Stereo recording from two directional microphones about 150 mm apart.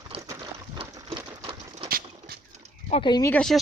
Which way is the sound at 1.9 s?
75° right (ahead or behind).